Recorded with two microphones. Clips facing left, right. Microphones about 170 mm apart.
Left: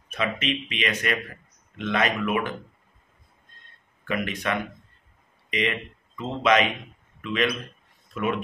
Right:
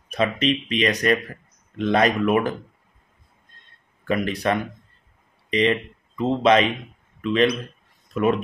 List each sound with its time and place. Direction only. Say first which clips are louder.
0.1 s speech: right 6 dB; 35° right (ahead or behind)
4.0 s a man's voice: right 5 dB; 35° right (ahead or behind)